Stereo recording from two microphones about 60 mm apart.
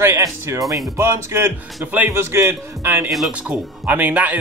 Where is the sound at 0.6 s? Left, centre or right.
Right.